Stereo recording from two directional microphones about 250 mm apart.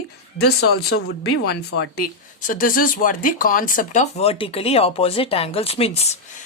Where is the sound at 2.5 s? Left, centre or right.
Left.